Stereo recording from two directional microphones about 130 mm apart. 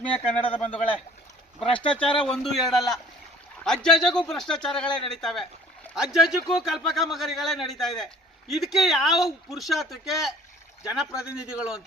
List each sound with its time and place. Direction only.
0.1 s speech: 50° left (ahead or behind)
1.6 s a sound: 40° left (ahead or behind)
2.2 s a man's voice: 5° left (ahead or behind)